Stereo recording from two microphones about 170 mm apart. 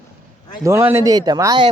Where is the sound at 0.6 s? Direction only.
15° right (ahead or behind).